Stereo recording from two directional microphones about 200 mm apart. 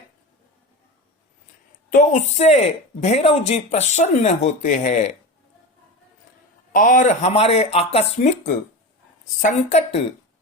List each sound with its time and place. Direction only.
1.9 s speech: 40° left (ahead or behind)
6.7 s speech: 40° left (ahead or behind)